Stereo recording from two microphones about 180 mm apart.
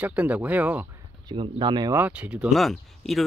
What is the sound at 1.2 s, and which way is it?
Speech, 25° right (ahead or behind).